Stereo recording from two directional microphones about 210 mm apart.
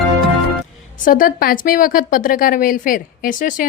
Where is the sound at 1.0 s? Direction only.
40° left (ahead or behind).